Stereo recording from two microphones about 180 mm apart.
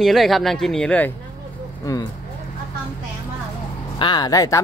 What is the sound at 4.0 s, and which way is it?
Speech, 25° left (ahead or behind).